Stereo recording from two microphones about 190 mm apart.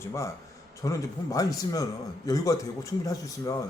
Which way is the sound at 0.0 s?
15° left (ahead or behind).